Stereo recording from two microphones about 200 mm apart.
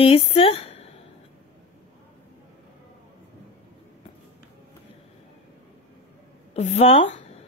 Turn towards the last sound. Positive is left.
turn(degrees=30)  # may be behind; listen again after turning